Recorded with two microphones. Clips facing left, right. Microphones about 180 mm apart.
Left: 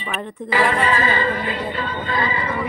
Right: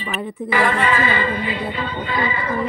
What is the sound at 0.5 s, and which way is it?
Music, 35° left (ahead or behind).